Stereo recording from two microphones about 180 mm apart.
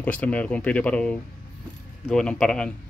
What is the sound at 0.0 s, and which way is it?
Speech, 10° left (ahead or behind).